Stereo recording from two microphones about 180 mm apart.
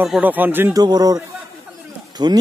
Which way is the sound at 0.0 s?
5° right (ahead or behind).